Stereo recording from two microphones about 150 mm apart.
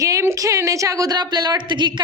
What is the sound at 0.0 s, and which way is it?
A woman's voice, 20° right (ahead or behind).